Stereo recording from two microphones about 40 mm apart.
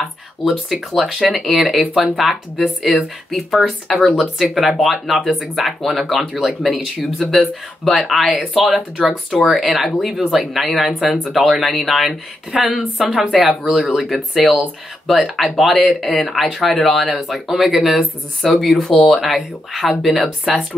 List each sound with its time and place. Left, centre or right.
0.0 s speech: centre
10.1 s speech: centre
10.4 s speech: centre
17.9 s speech: centre